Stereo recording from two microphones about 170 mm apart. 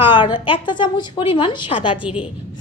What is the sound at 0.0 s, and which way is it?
A woman's voice, 30° left (ahead or behind).